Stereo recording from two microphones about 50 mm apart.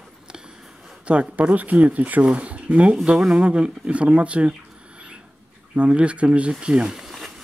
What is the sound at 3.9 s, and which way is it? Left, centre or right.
Mouse, right.